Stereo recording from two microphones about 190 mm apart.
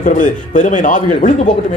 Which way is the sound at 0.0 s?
45° left (ahead or behind).